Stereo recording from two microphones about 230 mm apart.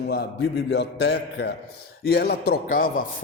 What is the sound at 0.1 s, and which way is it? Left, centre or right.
A man's voice, left.